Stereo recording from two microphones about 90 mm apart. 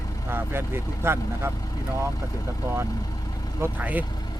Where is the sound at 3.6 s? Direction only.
20° right (ahead or behind).